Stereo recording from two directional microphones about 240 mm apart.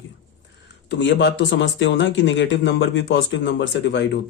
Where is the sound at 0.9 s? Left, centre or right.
Left.